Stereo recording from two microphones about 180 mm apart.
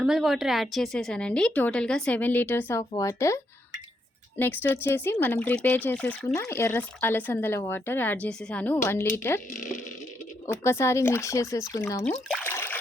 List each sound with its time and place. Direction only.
0.0 s speech: centre (ahead or behind); by 9.4 s 15° left (ahead or behind)
10.4 s speech: 15° left (ahead or behind)
12.3 s water: 10° left (ahead or behind)